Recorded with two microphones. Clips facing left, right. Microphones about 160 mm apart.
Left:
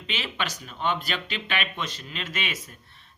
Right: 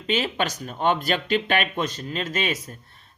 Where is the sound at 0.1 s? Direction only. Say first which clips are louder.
Right 8 dB; 45° right (ahead or behind).